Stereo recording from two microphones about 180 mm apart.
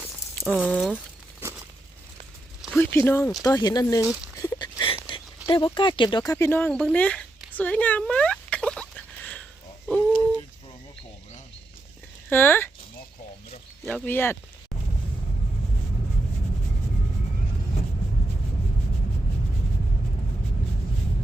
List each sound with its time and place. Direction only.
0.3 s crumpling: centre (ahead or behind)
2.7 s speech: 10° left (ahead or behind)
4.4 s a sound: 20° left (ahead or behind)
5.0 s speech: 25° left (ahead or behind); by 7.3 s 5° left (ahead or behind)
7.5 s a sound: 10° left (ahead or behind)
12.3 s speech: 10° left (ahead or behind)
13.8 s speech: 5° left (ahead or behind)